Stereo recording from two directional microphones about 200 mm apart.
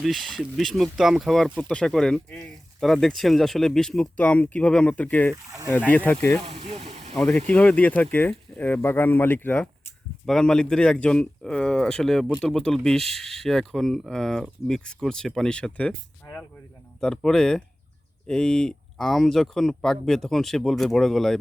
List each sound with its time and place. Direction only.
0.0 s speech: centre (ahead or behind)
5.3 s speech: 15° right (ahead or behind)
5.7 s speech: 10° left (ahead or behind)
6.4 s speech: 30° right (ahead or behind)
7.1 s speech: 5° left (ahead or behind)
16.2 s a sound: 5° left (ahead or behind)
17.0 s speech: centre (ahead or behind)